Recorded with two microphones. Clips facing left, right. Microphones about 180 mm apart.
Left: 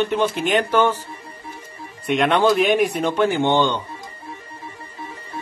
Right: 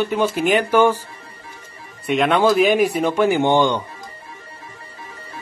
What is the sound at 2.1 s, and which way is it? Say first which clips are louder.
Speech: right 1 dB; centre (ahead or behind).